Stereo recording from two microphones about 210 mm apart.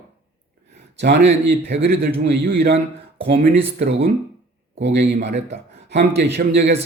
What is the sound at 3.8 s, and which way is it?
A man's voice, 60° right (ahead or behind).